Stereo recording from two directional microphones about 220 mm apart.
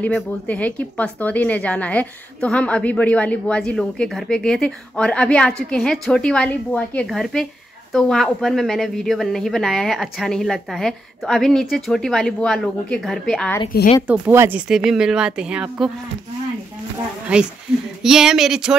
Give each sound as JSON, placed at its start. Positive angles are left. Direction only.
{"t": 0.0, "sound": "speech", "side_deg": 5}
{"t": 17.3, "sound": "speech", "side_deg": -5}